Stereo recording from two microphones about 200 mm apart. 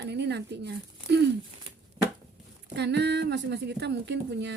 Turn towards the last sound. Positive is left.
turn(degrees=-60)  # may be behind; listen again after turning